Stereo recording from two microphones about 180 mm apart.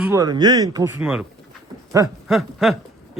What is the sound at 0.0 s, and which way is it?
Speech, 15° right (ahead or behind).